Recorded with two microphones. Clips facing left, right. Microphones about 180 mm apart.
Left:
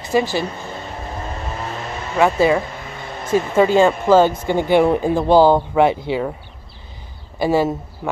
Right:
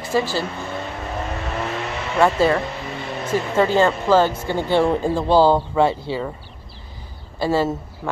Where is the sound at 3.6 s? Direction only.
15° left (ahead or behind).